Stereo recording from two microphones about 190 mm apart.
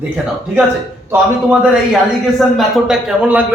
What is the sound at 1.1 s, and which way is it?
A man's voice, 5° right (ahead or behind).